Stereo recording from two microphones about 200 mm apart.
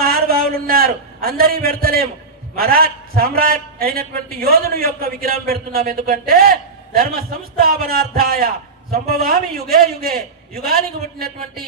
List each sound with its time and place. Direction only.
0.0 s a man's voice: 50° right (ahead or behind)